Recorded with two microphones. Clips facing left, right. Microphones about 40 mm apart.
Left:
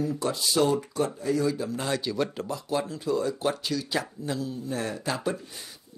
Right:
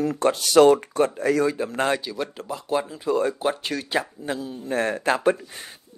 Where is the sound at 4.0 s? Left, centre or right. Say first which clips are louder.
Right 3 dB; right.